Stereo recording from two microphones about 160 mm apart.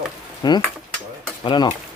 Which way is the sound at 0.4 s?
25° left (ahead or behind).